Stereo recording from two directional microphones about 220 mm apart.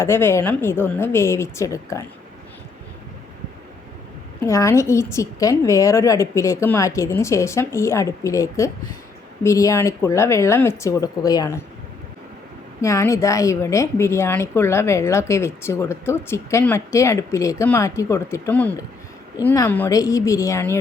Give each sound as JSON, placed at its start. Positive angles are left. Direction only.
{"t": 0.0, "sound": "speech", "side_deg": 10}
{"t": 4.4, "sound": "speech", "side_deg": 15}
{"t": 12.8, "sound": "speech", "side_deg": 15}